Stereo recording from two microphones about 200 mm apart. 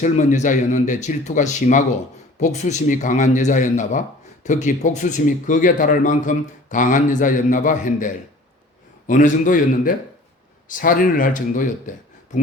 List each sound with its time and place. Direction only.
0.0 s speech: 40° left (ahead or behind)